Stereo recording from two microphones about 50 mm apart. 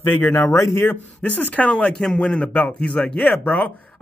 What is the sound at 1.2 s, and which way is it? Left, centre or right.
A man's voice, left.